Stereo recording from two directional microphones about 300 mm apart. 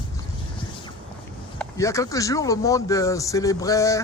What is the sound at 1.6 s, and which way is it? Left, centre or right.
Speech, centre.